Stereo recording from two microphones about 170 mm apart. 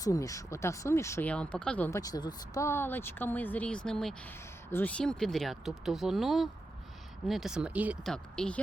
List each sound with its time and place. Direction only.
0.0 s speech: 20° left (ahead or behind)
2.0 s speech: 20° left (ahead or behind); by 7.9 s 10° right (ahead or behind)
8.0 s speech: 5° left (ahead or behind)